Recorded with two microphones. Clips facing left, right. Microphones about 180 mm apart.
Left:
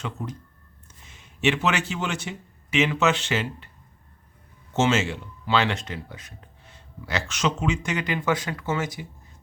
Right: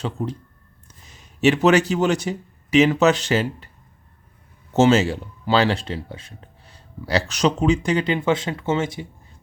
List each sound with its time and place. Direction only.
0.0 s speech: 30° right (ahead or behind)
4.7 s speech: 40° right (ahead or behind)